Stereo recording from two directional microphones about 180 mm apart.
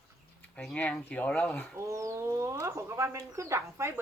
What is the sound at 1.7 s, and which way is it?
Speech, 15° right (ahead or behind).